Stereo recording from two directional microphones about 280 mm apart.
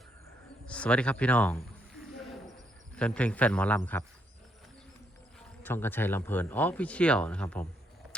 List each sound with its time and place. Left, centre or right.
0.7 s speech: centre
2.9 s speech: centre
5.6 s speech: centre